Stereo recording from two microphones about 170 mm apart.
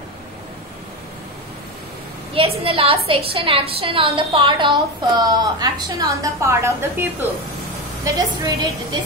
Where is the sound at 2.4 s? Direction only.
35° right (ahead or behind).